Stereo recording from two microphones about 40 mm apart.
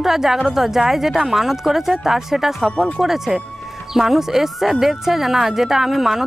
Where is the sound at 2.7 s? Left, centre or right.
Left.